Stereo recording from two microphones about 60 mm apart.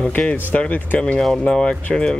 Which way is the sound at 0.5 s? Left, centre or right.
Left.